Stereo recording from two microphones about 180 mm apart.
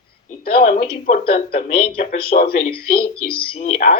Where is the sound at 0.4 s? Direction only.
50° left (ahead or behind).